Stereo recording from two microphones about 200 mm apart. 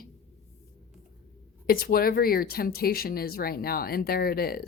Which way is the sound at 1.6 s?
50° left (ahead or behind).